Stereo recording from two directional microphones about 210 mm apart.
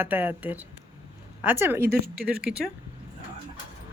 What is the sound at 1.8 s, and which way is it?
Speech, 45° right (ahead or behind).